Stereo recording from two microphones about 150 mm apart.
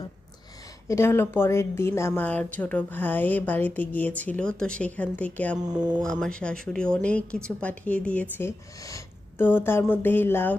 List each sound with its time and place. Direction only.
0.9 s a woman's voice: 15° left (ahead or behind)
5.6 s speech: 30° right (ahead or behind)
6.0 s a woman's voice: 5° left (ahead or behind)